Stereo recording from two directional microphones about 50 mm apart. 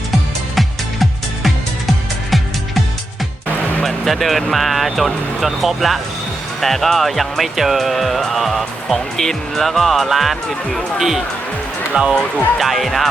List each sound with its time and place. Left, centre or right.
0.5 s music: centre
3.8 s speech: centre
11.9 s speech: right
12.5 s speech: centre